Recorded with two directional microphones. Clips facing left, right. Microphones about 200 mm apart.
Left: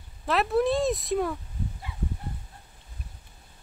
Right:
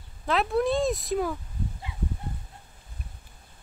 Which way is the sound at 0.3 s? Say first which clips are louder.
Left 1 dB; centre (ahead or behind).